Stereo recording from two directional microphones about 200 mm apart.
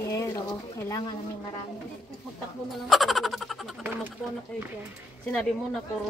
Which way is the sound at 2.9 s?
Centre (ahead or behind).